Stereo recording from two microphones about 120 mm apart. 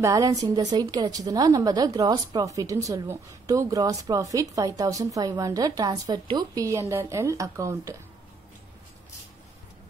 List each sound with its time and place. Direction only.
0.0 s a woman's voice: 30° right (ahead or behind)